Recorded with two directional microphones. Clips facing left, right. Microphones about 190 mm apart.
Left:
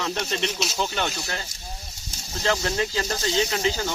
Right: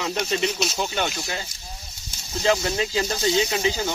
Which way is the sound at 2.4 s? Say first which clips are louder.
Right 2 dB; 15° right (ahead or behind).